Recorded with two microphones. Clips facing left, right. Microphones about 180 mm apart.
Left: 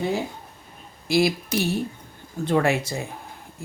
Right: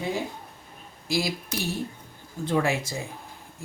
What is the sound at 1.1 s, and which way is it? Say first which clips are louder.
Speech: left 7 dB; 65° left (ahead or behind).